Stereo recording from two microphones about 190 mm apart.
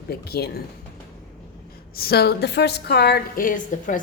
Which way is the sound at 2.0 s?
55° left (ahead or behind).